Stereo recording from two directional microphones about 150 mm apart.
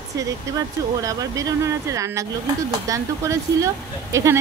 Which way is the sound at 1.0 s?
25° right (ahead or behind).